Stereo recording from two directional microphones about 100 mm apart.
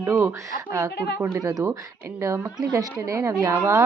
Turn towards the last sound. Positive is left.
turn(degrees=-25)  # may be behind; listen again after turning